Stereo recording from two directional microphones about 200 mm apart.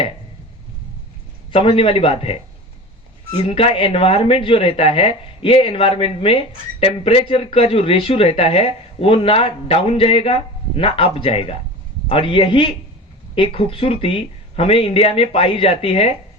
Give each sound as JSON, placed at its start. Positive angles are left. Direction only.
{"t": 1.5, "sound": "speech", "side_deg": 25}